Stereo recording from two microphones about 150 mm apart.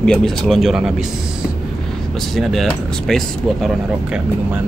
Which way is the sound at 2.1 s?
Centre (ahead or behind).